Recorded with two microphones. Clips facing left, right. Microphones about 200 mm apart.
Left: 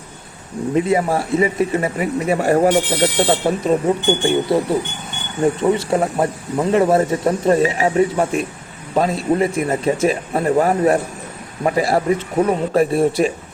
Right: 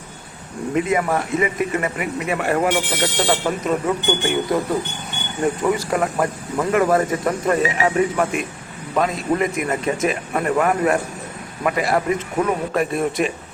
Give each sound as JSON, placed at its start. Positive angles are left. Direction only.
{"t": 0.8, "sound": "speech", "side_deg": 30}